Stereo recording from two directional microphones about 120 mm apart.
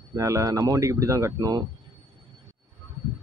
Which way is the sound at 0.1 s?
25° right (ahead or behind).